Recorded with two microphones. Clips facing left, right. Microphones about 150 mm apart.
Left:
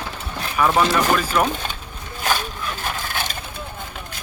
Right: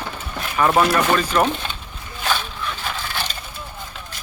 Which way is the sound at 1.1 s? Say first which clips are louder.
Right 1 dB; 5° left (ahead or behind).